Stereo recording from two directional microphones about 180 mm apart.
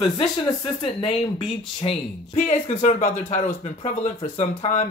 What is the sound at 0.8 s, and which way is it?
Speech, 30° left (ahead or behind).